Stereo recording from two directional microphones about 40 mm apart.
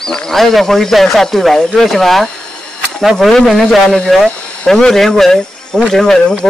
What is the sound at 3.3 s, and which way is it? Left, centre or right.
Speech, centre.